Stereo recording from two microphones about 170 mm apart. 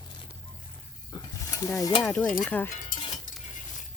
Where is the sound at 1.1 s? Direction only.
20° left (ahead or behind).